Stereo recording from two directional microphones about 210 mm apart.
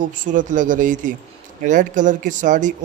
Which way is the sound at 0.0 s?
40° right (ahead or behind).